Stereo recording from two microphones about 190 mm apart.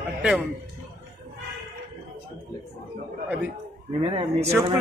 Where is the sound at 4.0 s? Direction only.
30° right (ahead or behind).